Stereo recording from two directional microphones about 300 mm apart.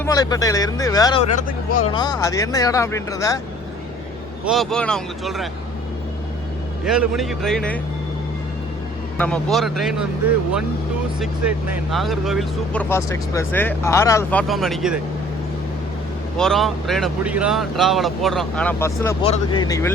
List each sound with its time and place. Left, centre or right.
0.0 s speech: centre
4.4 s speech: centre
6.8 s speech: centre
9.1 s speech: centre
11.2 s speech: centre
16.4 s speech: centre